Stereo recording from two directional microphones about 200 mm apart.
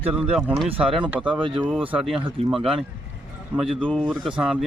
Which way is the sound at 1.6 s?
10° right (ahead or behind).